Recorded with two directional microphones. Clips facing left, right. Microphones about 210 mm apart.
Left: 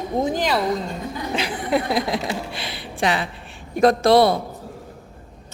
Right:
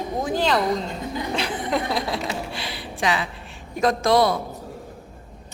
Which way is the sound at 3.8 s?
30° left (ahead or behind).